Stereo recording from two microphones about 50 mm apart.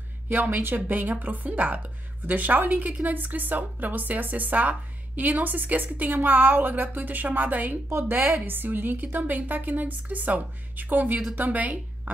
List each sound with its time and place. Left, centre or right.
0.3 s a woman's voice: right